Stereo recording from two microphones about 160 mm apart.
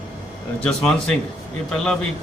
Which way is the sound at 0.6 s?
5° left (ahead or behind).